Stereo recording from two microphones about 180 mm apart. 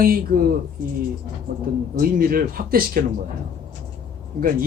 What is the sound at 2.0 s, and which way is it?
Speech, 55° right (ahead or behind).